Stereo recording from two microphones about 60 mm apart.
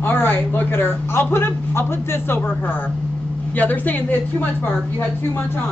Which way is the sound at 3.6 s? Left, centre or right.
Left.